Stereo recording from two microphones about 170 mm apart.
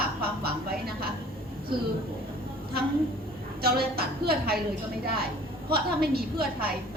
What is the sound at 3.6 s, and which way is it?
A woman's voice, 65° right (ahead or behind).